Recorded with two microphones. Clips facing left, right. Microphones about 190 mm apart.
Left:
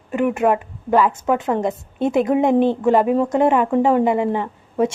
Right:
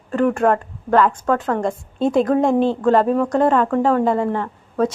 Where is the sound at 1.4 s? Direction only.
20° left (ahead or behind).